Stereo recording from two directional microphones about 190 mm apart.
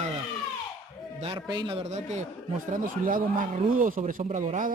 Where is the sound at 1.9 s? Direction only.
35° right (ahead or behind).